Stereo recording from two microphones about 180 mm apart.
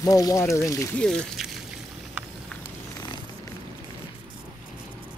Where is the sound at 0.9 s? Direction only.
5° left (ahead or behind).